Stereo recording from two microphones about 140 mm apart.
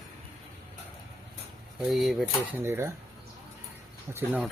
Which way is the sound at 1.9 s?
Centre (ahead or behind).